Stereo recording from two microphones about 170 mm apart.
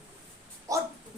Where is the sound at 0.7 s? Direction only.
20° right (ahead or behind).